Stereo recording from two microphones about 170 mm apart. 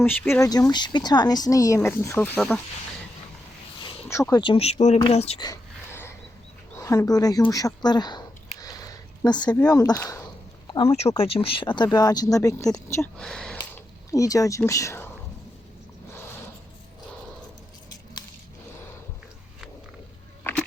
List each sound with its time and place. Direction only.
0.0 s speech: 10° left (ahead or behind)
4.1 s speech: 20° left (ahead or behind); by 5.4 s 35° left (ahead or behind)
5.4 s a sound: 20° left (ahead or behind)
6.8 s speech: 20° left (ahead or behind)
8.6 s a sound: 20° left (ahead or behind)
9.7 s speech: 20° left (ahead or behind)
11.2 s speech: 35° left (ahead or behind); by 13.1 s 15° left (ahead or behind)
13.1 s speech: 5° left (ahead or behind)
14.1 s speech: 20° left (ahead or behind)
20.4 s insect: 10° left (ahead or behind)